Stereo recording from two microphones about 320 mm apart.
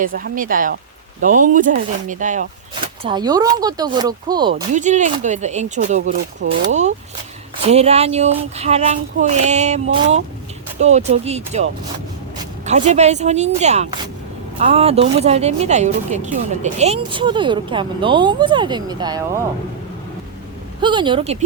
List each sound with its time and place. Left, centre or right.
0.0 s speech: right
7.5 s speech: centre
12.6 s speech: right
20.8 s speech: centre